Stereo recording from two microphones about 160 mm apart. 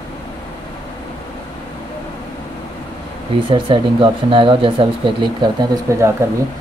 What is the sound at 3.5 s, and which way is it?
Speech, 30° right (ahead or behind).